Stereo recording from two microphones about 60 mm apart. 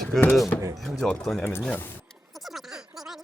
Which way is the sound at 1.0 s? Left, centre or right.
Centre.